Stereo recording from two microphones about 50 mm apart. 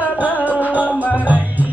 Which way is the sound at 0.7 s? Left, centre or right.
Right.